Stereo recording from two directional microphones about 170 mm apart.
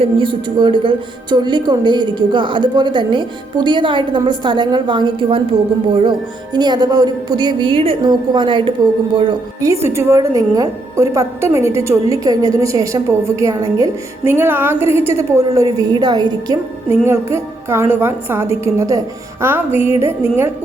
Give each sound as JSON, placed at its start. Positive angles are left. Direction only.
{"t": 0.0, "sound": "a woman's voice", "side_deg": -30}